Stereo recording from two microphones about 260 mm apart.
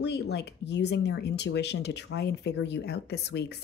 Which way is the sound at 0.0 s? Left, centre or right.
Left.